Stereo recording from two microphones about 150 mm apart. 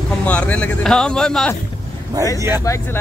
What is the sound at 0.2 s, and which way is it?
Speech, 10° left (ahead or behind).